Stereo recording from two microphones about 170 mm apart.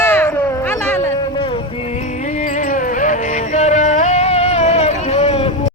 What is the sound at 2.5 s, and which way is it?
Music, 50° left (ahead or behind).